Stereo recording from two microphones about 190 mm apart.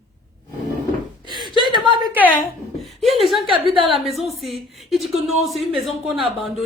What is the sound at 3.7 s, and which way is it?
Speech, 25° right (ahead or behind).